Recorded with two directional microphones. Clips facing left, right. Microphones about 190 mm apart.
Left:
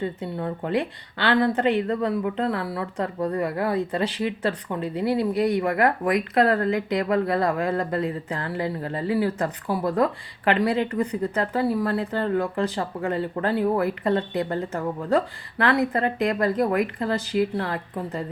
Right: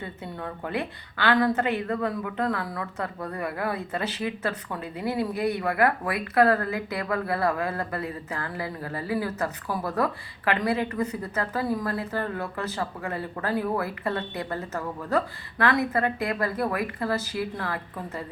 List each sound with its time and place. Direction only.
0.2 s speech: 25° left (ahead or behind)